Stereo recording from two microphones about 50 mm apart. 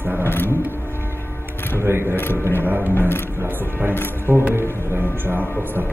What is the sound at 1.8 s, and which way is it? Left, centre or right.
Speech, right.